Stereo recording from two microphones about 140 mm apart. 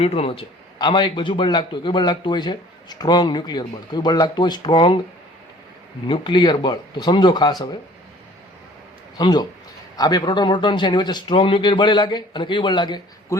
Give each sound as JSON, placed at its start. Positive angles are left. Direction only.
{"t": 0.0, "sound": "a man's voice", "side_deg": 45}
{"t": 6.1, "sound": "a man's voice", "side_deg": 35}
{"t": 9.1, "sound": "a man's voice", "side_deg": 30}